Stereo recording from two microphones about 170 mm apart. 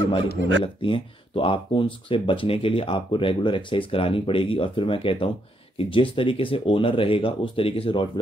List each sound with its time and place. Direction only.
0.4 s speech: 90° right
0.8 s speech: 30° left (ahead or behind)